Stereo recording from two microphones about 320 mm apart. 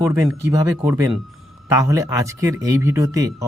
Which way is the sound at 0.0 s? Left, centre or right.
Centre.